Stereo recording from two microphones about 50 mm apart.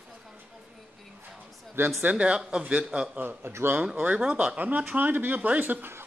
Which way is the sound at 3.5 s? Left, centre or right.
Right.